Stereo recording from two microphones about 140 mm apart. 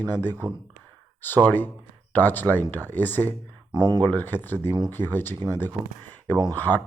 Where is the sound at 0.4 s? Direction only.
30° right (ahead or behind).